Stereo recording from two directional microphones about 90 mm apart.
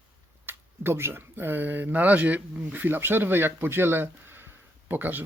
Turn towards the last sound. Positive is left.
turn(degrees=-20)  # may be behind; listen again after turning